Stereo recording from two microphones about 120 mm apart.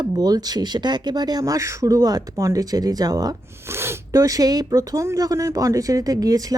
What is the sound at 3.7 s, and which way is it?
Speech, 20° right (ahead or behind).